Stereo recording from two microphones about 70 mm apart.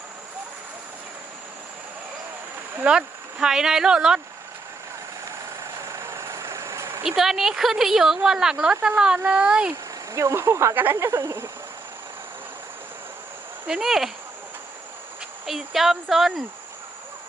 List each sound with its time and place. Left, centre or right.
2.8 s speech: centre
3.4 s speech: centre
5.8 s vehicle: right
7.2 s speech: centre
9.1 s speech: right
9.5 s speech: centre
10.1 s speech: right
10.8 s speech: right
13.7 s speech: centre
15.4 s speech: centre